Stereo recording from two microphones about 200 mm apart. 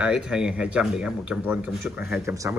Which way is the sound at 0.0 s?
5° right (ahead or behind).